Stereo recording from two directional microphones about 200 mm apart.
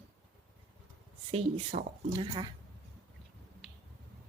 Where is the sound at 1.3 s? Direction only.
30° right (ahead or behind).